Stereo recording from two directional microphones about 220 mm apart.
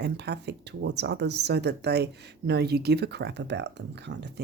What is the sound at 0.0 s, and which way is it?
Speech, 50° right (ahead or behind).